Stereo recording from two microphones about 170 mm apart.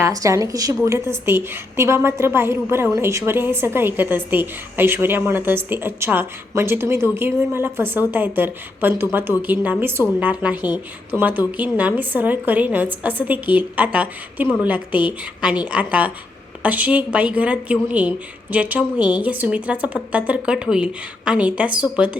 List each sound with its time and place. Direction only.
0.0 s a woman's voice: 20° right (ahead or behind)